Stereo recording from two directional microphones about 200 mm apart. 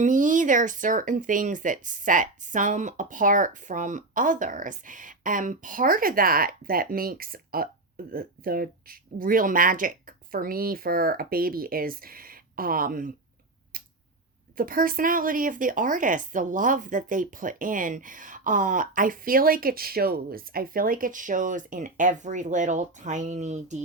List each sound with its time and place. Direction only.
0.0 s speech: 40° right (ahead or behind)
13.7 s tick: 45° right (ahead or behind)
14.5 s speech: 45° right (ahead or behind)